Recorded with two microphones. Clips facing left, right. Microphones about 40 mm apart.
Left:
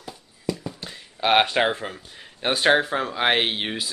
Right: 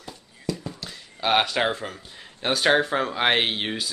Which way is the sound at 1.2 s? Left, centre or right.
Left.